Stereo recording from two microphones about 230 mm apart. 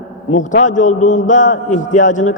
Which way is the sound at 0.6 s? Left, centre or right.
Left.